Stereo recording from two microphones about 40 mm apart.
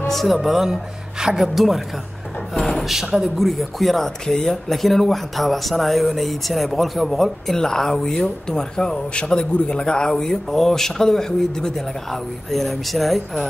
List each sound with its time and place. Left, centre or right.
0.1 s speech: centre
0.4 s speech: centre
2.6 s a sound: centre
2.9 s speech: centre
3.3 s speech: centre
7.5 s speech: centre